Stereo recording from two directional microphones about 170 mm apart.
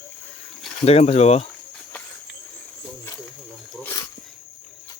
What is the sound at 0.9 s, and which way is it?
Speech, 40° left (ahead or behind).